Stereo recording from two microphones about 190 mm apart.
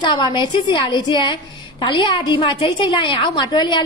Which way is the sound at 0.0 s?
25° left (ahead or behind).